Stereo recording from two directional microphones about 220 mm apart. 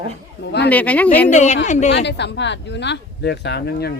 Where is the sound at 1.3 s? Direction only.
30° left (ahead or behind).